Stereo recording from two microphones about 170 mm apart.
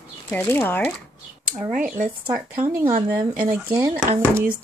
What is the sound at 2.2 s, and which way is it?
Speech, 10° right (ahead or behind).